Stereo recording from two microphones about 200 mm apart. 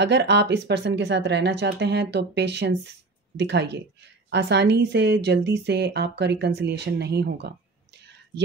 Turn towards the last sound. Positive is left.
turn(degrees=-55)  # may be behind; listen again after turning